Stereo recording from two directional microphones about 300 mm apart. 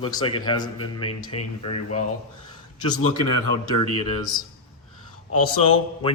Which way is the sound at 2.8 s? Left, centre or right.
Centre.